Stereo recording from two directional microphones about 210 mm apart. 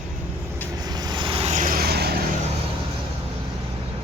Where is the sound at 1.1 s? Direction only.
25° right (ahead or behind); by 2.1 s 50° right (ahead or behind).